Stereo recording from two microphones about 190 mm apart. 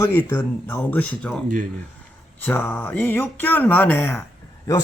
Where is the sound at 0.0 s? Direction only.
15° left (ahead or behind).